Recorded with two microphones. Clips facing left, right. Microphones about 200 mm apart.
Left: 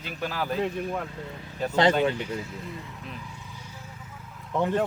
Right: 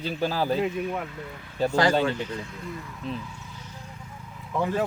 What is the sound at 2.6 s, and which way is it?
Speech, 20° left (ahead or behind).